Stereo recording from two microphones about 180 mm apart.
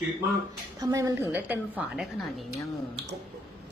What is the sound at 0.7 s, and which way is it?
A woman's voice, 20° right (ahead or behind).